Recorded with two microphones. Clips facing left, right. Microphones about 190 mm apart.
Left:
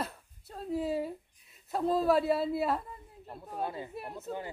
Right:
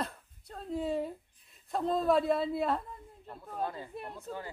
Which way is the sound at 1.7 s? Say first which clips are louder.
Left 1 dB; 5° left (ahead or behind).